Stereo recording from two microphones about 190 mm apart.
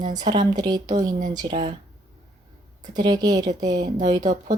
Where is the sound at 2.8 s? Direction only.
20° right (ahead or behind).